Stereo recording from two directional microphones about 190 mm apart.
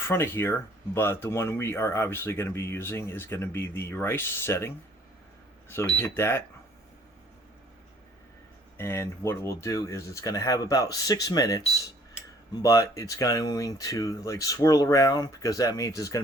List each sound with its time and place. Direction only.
0.1 s speech: 10° left (ahead or behind)
8.8 s speech: 15° left (ahead or behind)